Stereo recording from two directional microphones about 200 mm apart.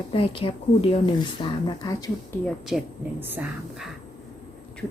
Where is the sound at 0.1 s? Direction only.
25° left (ahead or behind).